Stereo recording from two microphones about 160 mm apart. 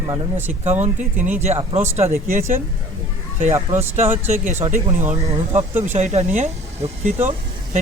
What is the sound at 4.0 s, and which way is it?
Speech, 50° right (ahead or behind).